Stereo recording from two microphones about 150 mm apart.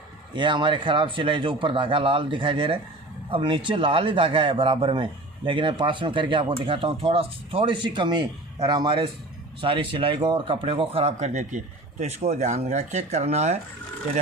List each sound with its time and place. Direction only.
0.3 s speech: 30° right (ahead or behind); by 13.6 s 50° right (ahead or behind)